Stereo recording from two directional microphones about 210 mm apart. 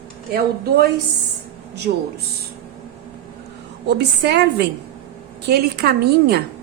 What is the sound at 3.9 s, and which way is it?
Speech, 50° right (ahead or behind).